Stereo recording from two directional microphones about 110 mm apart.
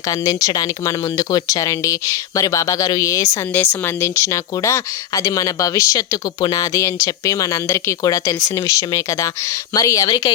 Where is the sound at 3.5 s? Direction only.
20° left (ahead or behind).